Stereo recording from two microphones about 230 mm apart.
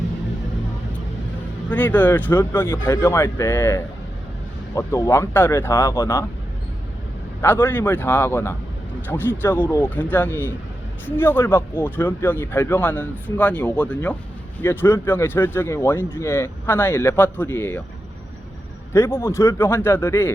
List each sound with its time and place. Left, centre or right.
1.7 s speech: centre
7.4 s speech: centre
18.9 s speech: centre